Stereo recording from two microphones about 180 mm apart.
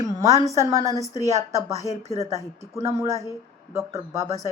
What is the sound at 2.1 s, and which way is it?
Speech, 20° left (ahead or behind).